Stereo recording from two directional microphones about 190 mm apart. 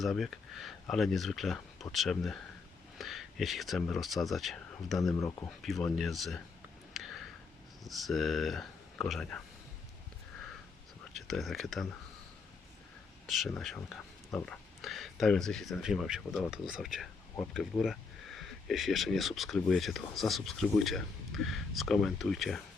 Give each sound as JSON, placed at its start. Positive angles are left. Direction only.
{"t": 0.0, "sound": "speech", "side_deg": 0}
{"t": 6.9, "sound": "a sound", "side_deg": 0}
{"t": 7.9, "sound": "speech", "side_deg": 0}
{"t": 11.1, "sound": "speech", "side_deg": 0}
{"t": 13.2, "sound": "speech", "side_deg": 0}